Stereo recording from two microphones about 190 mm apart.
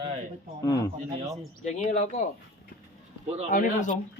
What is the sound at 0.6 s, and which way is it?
Speech, 15° left (ahead or behind).